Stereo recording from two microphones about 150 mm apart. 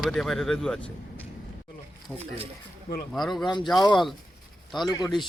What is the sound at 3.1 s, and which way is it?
Speech, centre (ahead or behind).